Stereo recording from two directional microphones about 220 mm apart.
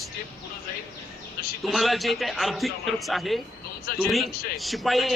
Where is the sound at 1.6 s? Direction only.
Centre (ahead or behind).